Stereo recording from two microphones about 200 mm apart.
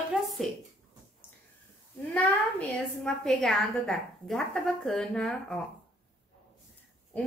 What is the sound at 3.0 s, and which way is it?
A woman's voice, centre (ahead or behind).